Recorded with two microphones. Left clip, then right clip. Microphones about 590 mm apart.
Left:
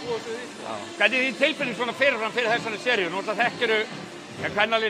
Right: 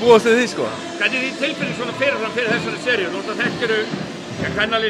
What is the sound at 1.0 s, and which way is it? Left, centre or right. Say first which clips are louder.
Speech: right 1 dB; left.